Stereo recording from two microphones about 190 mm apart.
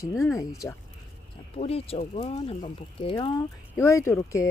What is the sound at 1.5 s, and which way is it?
Speech, 30° left (ahead or behind).